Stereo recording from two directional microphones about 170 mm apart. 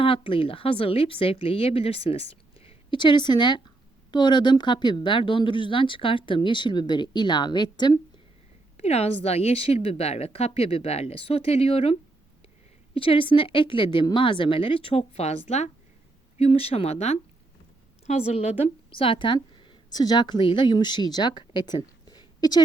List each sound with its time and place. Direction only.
0.0 s speech: 30° left (ahead or behind)
8.8 s a woman's voice: 40° left (ahead or behind)